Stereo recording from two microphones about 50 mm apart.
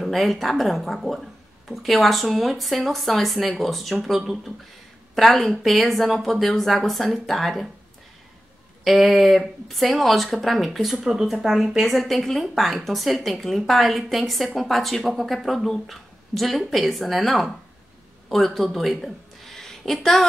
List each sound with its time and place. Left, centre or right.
0.0 s speech: centre
8.8 s speech: centre